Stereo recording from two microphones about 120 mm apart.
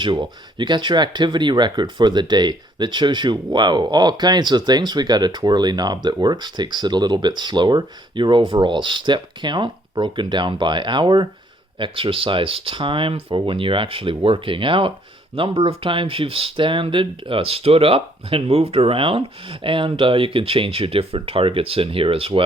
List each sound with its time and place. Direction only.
0.0 s speech: 40° right (ahead or behind)